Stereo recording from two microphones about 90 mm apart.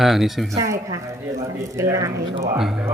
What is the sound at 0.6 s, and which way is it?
Speech, 40° right (ahead or behind).